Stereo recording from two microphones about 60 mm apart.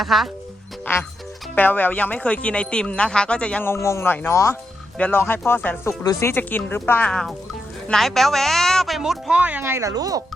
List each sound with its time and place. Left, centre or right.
0.0 s a woman's voice: centre
0.9 s speech: left; by 3.6 s centre
3.6 s a man's voice: left
5.1 s speech: left
6.2 s a man's voice: left
6.7 s speech: left
7.0 s a woman's voice: centre
9.0 s speech: centre
9.4 s speech: right
9.6 s speech: right
9.9 s speech: right